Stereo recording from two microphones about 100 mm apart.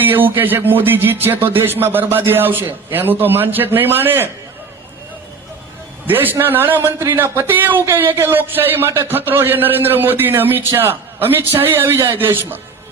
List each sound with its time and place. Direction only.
0.0 s a man's voice: 20° right (ahead or behind)
6.1 s a man's voice: 20° right (ahead or behind)